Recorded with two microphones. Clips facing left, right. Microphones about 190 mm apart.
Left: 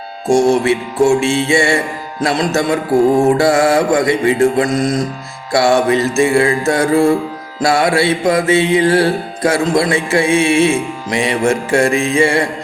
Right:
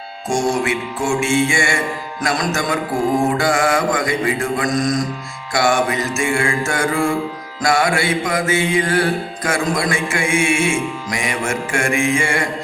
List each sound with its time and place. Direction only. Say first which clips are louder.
0.6 s music: left 8 dB; 30° left (ahead or behind)